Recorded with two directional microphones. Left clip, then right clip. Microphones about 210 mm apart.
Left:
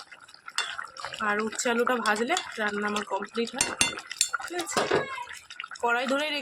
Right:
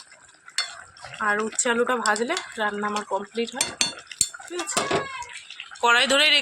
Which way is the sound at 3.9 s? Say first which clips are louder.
Left 1 dB; 15° left (ahead or behind).